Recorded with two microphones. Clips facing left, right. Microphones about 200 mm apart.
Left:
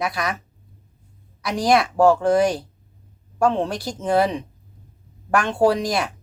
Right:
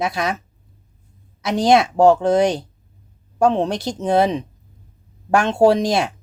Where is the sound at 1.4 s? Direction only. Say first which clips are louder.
Right 4 dB; 25° right (ahead or behind).